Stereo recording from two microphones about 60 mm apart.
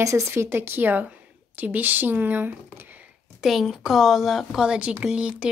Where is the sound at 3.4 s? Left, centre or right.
Centre.